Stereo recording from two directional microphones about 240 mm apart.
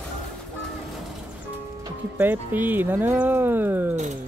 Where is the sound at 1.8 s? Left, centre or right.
Centre.